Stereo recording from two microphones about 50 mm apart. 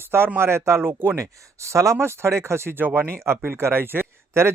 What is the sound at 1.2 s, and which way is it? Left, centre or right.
Speech, right.